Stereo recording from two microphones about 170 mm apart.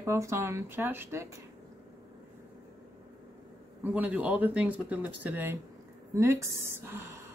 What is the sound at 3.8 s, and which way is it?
Speech, 10° right (ahead or behind).